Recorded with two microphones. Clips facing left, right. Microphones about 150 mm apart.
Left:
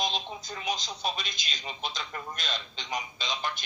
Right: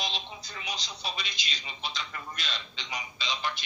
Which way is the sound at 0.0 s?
45° left (ahead or behind).